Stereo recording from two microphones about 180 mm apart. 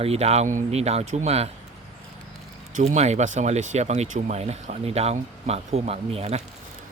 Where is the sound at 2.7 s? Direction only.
40° right (ahead or behind).